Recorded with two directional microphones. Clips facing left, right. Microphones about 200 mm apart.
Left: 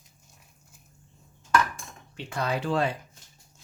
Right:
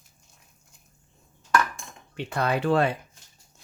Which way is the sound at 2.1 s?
60° right (ahead or behind).